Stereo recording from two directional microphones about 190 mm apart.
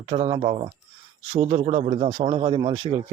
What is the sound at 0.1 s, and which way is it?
A man's voice, 30° right (ahead or behind).